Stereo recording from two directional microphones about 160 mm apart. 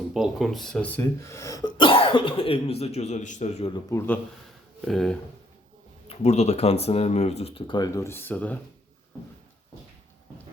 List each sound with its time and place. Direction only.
0.1 s speech: centre (ahead or behind); by 3.7 s 45° left (ahead or behind)
3.7 s speech: 20° left (ahead or behind)
4.9 s speech: centre (ahead or behind)
6.1 s speech: 45° left (ahead or behind)
7.9 s speech: 20° left (ahead or behind)